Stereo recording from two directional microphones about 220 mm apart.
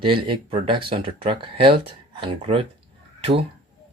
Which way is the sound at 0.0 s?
20° right (ahead or behind).